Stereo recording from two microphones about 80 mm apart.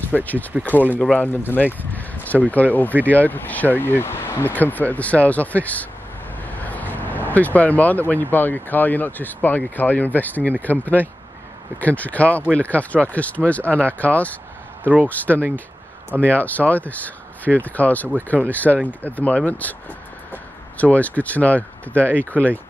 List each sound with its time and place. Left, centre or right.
0.1 s speech: left
1.4 s a sound: left
2.5 s speech: left
14.8 s speech: centre
15.0 s speech: left
20.7 s speech: centre
21.9 s speech: right
22.2 s speech: centre